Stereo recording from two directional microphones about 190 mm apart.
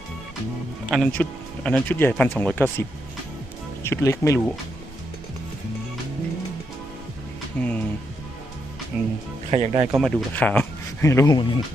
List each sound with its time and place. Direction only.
0.9 s speech: centre (ahead or behind)
3.8 s speech: 15° left (ahead or behind)
7.6 s speech: 5° left (ahead or behind)
8.9 s speech: 5° right (ahead or behind)
9.5 s speech: 35° right (ahead or behind)
10.0 s speech: 5° left (ahead or behind); by 11.6 s 20° left (ahead or behind)